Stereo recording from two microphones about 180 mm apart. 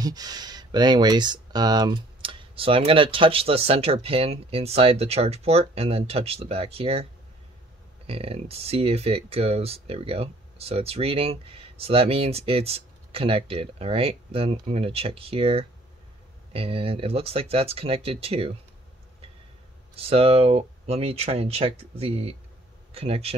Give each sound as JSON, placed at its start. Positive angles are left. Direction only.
{"t": 0.0, "sound": "speech", "side_deg": -20}
{"t": 8.1, "sound": "speech", "side_deg": -35}
{"t": 20.0, "sound": "speech", "side_deg": -35}